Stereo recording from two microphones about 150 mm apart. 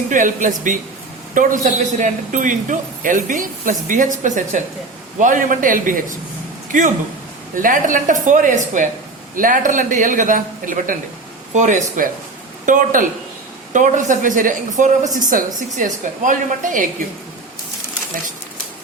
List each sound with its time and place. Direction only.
0.1 s a man's voice: 60° right (ahead or behind)